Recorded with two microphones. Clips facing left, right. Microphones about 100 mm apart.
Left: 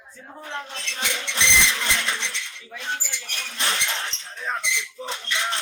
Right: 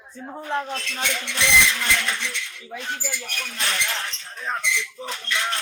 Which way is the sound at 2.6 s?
35° right (ahead or behind).